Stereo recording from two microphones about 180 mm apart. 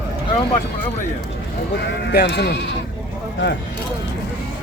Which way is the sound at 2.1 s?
65° left (ahead or behind).